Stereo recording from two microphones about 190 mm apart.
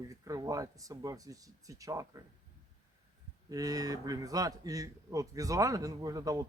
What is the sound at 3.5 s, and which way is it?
A man's voice, 20° right (ahead or behind).